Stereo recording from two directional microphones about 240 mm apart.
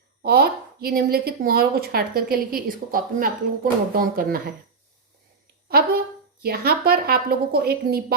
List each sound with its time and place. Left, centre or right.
0.2 s a woman's voice: right
5.6 s a sound: right
6.4 s a woman's voice: right